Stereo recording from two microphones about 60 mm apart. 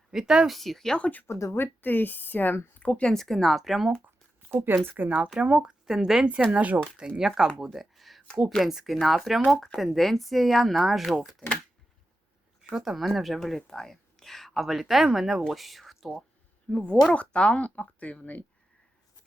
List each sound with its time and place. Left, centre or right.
0.1 s a woman's voice: centre
0.9 s speech: left
1.3 s speech: left
1.5 s speech: left
2.9 s a woman's voice: centre
4.0 s a sound: right
4.9 s speech: right
5.8 s speech: centre
6.5 s speech: right
7.6 s a sound: centre
8.4 s a woman's voice: centre
12.7 s a woman's voice: centre
16.7 s speech: centre